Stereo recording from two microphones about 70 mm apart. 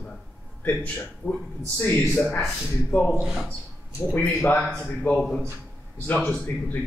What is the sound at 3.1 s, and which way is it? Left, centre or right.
Speech, centre.